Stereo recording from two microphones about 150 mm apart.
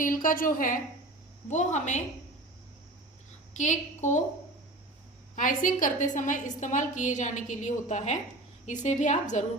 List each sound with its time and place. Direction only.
0.0 s a woman's voice: 65° left (ahead or behind)
1.5 s a woman's voice: 50° left (ahead or behind)
3.6 s a woman's voice: 55° left (ahead or behind)
5.4 s a woman's voice: 60° left (ahead or behind)